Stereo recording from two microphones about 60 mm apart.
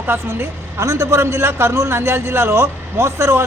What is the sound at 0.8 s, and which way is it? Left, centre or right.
A man's voice, right.